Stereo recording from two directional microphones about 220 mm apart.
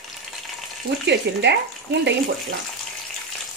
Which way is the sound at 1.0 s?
50° right (ahead or behind).